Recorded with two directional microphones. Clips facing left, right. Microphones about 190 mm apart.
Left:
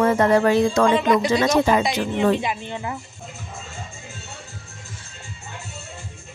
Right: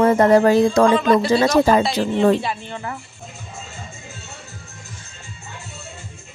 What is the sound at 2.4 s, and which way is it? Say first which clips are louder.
Speech: even; 15° left (ahead or behind).